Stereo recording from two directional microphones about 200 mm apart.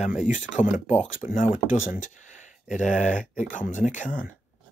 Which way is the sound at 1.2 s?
40° left (ahead or behind).